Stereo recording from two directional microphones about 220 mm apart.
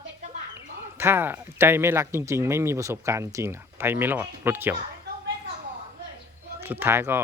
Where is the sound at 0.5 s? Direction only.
10° right (ahead or behind).